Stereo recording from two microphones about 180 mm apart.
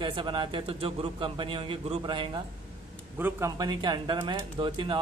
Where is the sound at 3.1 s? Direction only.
15° right (ahead or behind).